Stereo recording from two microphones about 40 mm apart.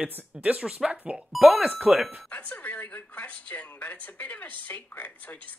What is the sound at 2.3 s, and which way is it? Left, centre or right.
Speech, left.